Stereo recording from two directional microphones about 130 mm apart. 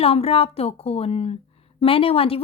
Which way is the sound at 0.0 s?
50° left (ahead or behind).